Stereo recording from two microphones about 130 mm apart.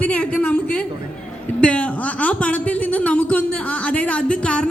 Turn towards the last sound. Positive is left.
turn(degrees=10)  # may be behind; listen again after turning